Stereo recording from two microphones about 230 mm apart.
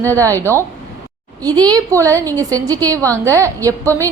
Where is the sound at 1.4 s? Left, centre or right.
Centre.